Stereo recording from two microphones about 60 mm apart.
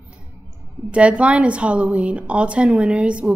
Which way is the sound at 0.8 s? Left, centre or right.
Right.